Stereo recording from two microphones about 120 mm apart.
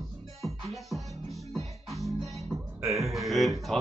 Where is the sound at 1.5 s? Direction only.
Centre (ahead or behind).